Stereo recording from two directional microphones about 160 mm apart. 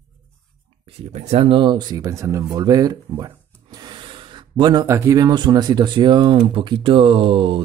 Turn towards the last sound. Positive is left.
turn(degrees=-35)  # may be behind; listen again after turning